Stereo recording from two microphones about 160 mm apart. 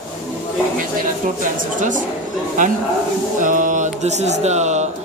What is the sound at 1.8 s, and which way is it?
Speech, 50° right (ahead or behind).